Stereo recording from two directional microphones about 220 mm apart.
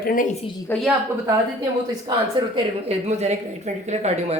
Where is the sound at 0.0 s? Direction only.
40° left (ahead or behind).